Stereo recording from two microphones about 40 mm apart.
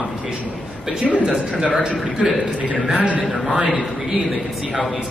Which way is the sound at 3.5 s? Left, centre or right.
Right.